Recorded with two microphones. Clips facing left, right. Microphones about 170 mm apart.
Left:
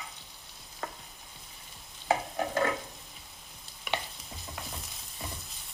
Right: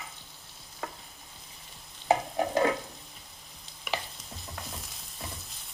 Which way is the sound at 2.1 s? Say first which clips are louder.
Right 3 dB; 20° right (ahead or behind).